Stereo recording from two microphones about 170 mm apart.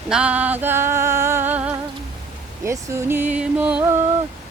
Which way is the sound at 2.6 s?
15° right (ahead or behind).